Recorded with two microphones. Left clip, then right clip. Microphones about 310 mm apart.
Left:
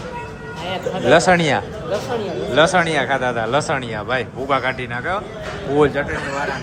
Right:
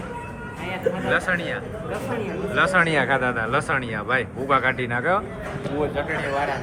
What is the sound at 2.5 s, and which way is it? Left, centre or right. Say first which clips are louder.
Speech: left 4 dB; centre.